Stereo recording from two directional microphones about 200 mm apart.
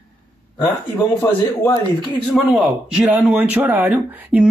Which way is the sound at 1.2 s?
20° left (ahead or behind).